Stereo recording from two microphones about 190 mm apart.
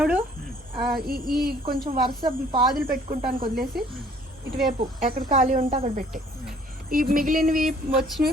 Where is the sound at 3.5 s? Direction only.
Centre (ahead or behind).